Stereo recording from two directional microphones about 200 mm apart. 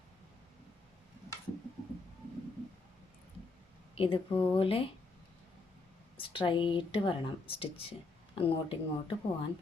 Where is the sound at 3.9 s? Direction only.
25° left (ahead or behind).